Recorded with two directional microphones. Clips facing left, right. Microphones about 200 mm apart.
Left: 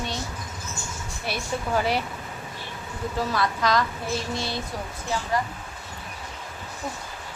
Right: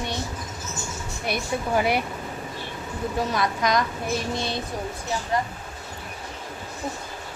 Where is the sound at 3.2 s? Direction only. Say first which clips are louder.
Left 1 dB; 15° right (ahead or behind).